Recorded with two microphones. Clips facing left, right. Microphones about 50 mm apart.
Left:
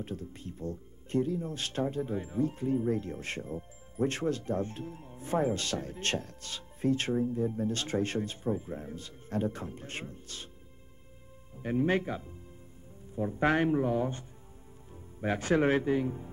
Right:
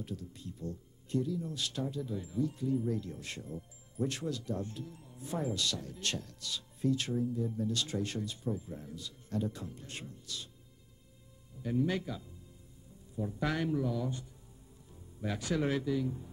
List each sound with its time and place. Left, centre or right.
0.0 s speech: left
11.6 s speech: left